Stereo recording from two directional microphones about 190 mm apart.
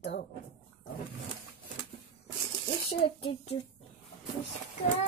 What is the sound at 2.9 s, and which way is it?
Speech, 30° left (ahead or behind).